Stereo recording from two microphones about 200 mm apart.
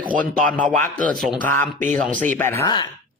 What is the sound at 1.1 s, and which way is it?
Speech, centre (ahead or behind).